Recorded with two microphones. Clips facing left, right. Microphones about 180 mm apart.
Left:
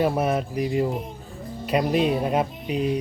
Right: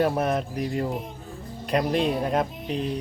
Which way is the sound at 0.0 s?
5° left (ahead or behind).